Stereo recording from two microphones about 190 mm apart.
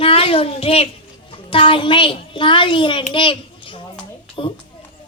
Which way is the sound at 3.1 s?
25° left (ahead or behind).